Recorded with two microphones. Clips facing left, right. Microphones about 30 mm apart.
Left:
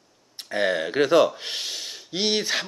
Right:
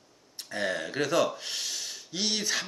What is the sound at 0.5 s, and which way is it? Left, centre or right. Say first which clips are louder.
A man's voice: left 7 dB; left.